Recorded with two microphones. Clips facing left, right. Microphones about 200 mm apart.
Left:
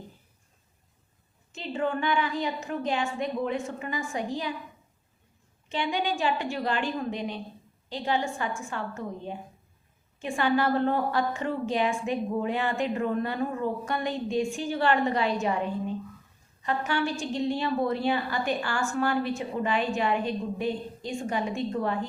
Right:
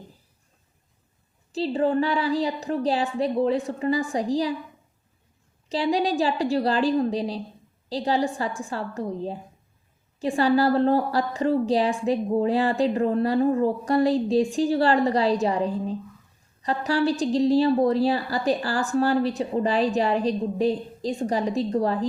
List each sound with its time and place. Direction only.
1.5 s a woman's voice: 35° right (ahead or behind)
5.6 s a woman's voice: 35° right (ahead or behind)